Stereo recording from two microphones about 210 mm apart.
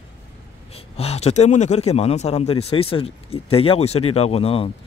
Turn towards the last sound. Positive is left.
turn(degrees=25)  # may be behind; listen again after turning